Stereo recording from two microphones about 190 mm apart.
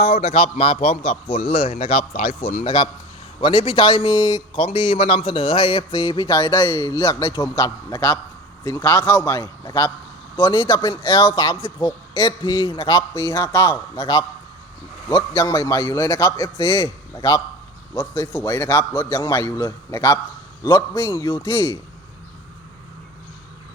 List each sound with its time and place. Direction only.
0.0 s a man's voice: 35° left (ahead or behind); by 21.8 s 15° left (ahead or behind)